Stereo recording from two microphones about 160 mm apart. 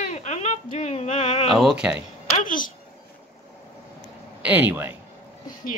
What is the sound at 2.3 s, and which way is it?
Speech, 55° left (ahead or behind).